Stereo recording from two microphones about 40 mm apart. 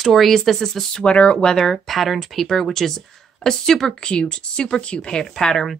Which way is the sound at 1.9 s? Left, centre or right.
Centre.